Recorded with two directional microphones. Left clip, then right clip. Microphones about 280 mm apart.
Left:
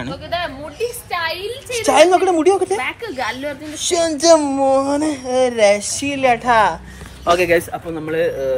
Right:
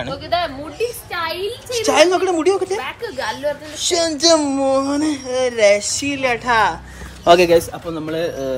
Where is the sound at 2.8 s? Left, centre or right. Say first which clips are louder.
Left 2 dB; left.